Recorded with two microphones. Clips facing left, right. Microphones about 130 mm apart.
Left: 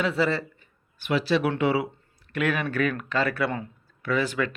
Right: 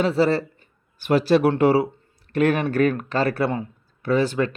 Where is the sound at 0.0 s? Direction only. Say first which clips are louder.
Right 5 dB; 35° right (ahead or behind).